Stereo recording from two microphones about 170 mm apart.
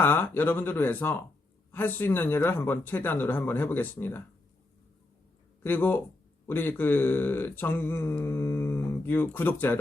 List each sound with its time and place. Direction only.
0.0 s speech: 10° left (ahead or behind)
5.6 s speech: 10° left (ahead or behind)